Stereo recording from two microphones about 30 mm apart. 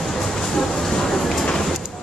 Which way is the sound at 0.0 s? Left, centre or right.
Centre.